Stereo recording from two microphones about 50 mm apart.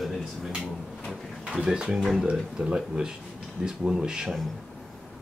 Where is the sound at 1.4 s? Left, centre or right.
Centre.